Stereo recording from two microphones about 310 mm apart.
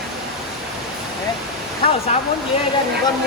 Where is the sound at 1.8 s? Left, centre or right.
Centre.